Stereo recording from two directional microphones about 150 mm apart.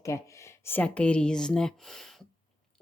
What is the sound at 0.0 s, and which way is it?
Speech, 20° left (ahead or behind).